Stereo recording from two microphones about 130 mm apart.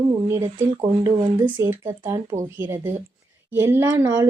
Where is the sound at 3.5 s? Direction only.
20° right (ahead or behind).